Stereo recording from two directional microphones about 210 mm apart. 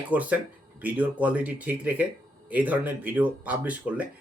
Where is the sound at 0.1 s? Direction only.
5° right (ahead or behind).